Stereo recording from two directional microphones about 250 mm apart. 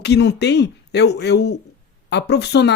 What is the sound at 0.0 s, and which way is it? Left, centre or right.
Speech, left.